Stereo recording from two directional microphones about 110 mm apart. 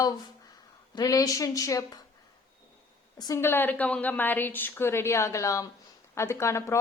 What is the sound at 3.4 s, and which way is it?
A woman's voice, 20° left (ahead or behind).